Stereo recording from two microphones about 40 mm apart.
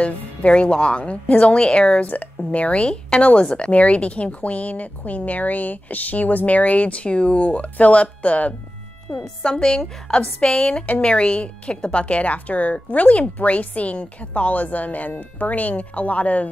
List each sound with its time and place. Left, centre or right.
0.0 s a woman's voice: left
3.7 s a woman's voice: left
9.1 s a woman's voice: left